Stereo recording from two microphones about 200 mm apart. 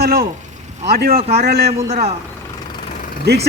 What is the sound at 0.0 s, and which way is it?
Speech, 50° right (ahead or behind).